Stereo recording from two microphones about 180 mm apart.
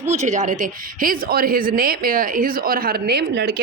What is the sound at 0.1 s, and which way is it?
A man's voice, 40° right (ahead or behind).